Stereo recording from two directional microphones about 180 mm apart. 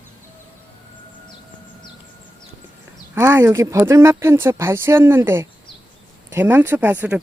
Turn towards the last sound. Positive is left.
turn(degrees=-10)  # may be behind; listen again after turning